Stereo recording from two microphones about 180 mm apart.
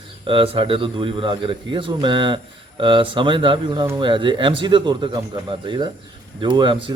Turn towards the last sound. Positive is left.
turn(degrees=-25)  # may be behind; listen again after turning